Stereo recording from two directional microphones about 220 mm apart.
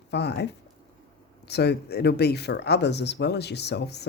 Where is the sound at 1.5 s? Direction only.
50° left (ahead or behind).